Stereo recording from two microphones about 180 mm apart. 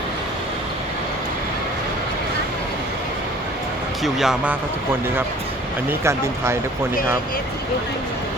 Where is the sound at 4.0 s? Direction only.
Centre (ahead or behind).